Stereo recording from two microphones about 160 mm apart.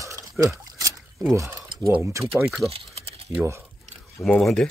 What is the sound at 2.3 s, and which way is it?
Speech, centre (ahead or behind).